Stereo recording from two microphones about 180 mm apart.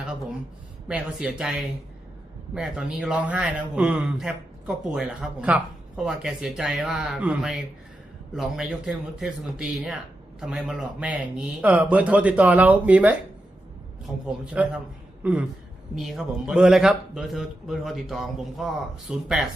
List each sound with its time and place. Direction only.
0.9 s a man's voice: 5° right (ahead or behind)
14.5 s a man's voice: 5° right (ahead or behind)